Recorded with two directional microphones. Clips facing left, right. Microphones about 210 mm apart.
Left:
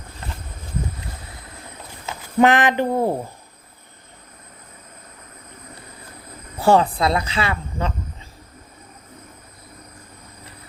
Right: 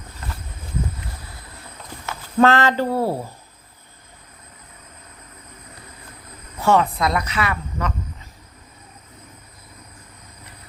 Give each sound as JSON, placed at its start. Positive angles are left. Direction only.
{"t": 2.4, "sound": "speech", "side_deg": 15}
{"t": 6.6, "sound": "speech", "side_deg": 30}